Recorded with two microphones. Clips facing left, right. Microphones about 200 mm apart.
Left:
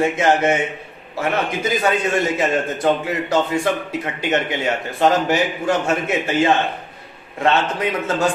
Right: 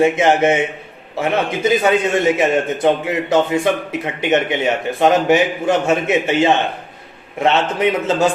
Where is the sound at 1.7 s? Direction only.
20° right (ahead or behind).